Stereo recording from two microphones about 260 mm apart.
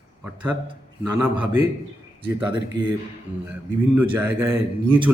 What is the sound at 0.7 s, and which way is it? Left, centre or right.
A man's voice, centre.